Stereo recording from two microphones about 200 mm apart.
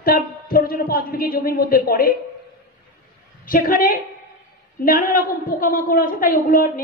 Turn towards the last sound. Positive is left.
turn(degrees=45)  # may be behind; listen again after turning